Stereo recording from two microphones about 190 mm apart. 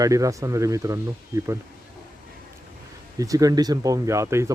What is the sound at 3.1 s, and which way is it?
Speech, 20° right (ahead or behind).